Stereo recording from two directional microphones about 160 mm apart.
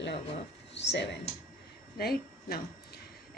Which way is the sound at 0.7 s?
90° left.